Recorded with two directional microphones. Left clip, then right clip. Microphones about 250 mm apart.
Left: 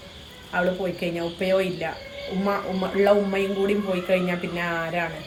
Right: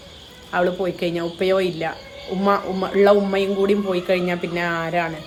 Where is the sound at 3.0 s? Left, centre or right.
Centre.